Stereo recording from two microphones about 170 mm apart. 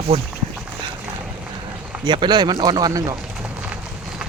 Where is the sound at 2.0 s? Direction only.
25° right (ahead or behind).